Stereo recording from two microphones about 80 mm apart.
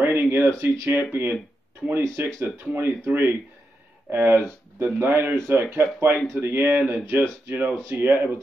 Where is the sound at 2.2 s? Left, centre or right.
Right.